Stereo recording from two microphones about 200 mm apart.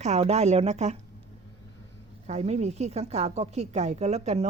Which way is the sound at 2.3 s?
35° right (ahead or behind).